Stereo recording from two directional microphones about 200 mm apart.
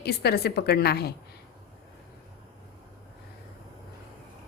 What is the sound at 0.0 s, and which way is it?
A woman's voice, 50° left (ahead or behind).